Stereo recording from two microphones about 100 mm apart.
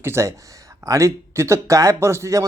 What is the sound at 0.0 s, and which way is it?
Speech, 25° right (ahead or behind).